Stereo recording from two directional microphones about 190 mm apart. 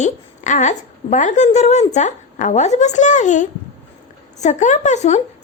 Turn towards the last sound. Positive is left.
turn(degrees=35)  # may be behind; listen again after turning